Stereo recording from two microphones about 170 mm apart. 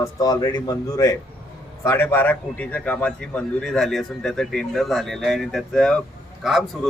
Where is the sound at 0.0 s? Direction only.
20° left (ahead or behind).